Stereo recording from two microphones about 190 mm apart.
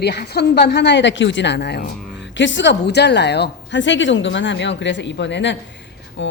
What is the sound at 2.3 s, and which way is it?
A woman's voice, 70° left (ahead or behind).